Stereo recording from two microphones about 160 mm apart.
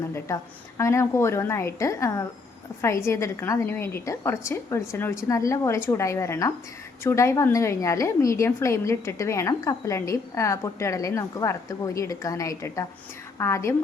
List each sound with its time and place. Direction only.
0.8 s a woman's voice: 15° left (ahead or behind)